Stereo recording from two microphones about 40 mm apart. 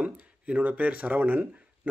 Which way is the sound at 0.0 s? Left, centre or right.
Right.